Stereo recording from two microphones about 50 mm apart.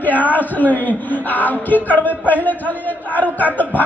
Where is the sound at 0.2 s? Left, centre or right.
Left.